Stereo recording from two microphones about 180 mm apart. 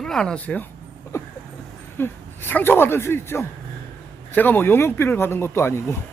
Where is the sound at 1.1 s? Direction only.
15° left (ahead or behind).